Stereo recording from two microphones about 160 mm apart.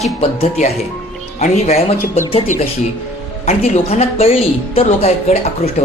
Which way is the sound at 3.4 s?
40° left (ahead or behind).